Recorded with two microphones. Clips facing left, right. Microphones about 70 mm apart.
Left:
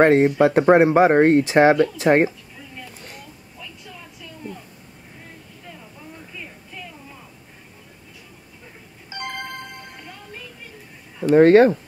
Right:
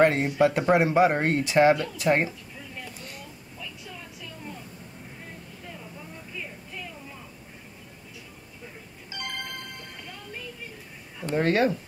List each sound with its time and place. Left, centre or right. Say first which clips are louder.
0.0 s speech: left 6 dB; left
9.2 s music: left 5 dB; left
11.3 s speech: left 11 dB; left